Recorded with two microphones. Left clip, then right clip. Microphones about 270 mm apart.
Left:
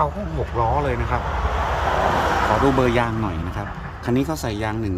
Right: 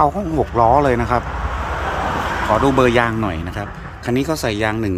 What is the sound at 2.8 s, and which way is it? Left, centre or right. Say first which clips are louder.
A man's voice: right 5 dB; centre.